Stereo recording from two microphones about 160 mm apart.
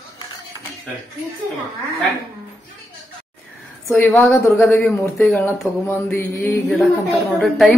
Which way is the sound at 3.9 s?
10° left (ahead or behind).